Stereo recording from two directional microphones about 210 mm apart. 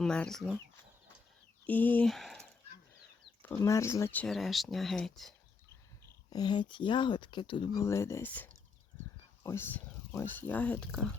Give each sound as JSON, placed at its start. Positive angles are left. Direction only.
{"t": 0.0, "sound": "speech", "side_deg": 5}
{"t": 1.6, "sound": "speech", "side_deg": 10}
{"t": 3.4, "sound": "speech", "side_deg": 15}
{"t": 6.3, "sound": "speech", "side_deg": 20}